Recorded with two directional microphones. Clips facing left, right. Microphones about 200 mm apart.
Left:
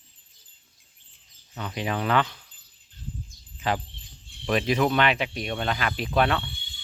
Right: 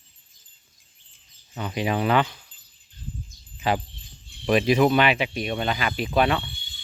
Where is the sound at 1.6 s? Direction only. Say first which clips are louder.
Right 4 dB; 10° right (ahead or behind).